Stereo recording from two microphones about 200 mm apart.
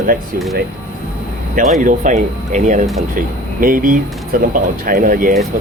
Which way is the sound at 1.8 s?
40° right (ahead or behind).